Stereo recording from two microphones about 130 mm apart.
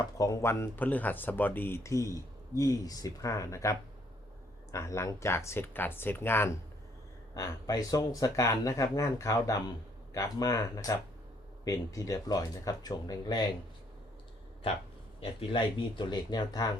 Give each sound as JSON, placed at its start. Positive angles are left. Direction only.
{"t": 0.2, "sound": "speech", "side_deg": 25}
{"t": 7.3, "sound": "speech", "side_deg": 25}
{"t": 15.2, "sound": "speech", "side_deg": 40}